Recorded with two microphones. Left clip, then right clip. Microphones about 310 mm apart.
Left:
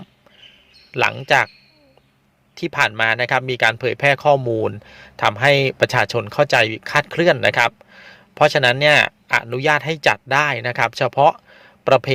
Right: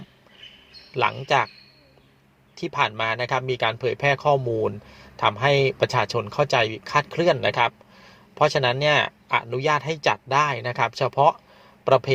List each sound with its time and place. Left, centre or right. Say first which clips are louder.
0.9 s speech: left 5 dB; left
2.6 s speech: left 5 dB; left